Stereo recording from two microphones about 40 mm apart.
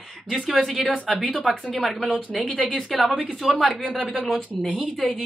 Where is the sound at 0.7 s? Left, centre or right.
Right.